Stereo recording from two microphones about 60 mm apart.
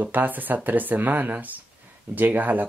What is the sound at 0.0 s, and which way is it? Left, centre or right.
Speech, right.